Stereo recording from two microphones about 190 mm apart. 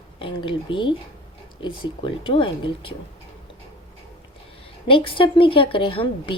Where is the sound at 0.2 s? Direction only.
25° left (ahead or behind).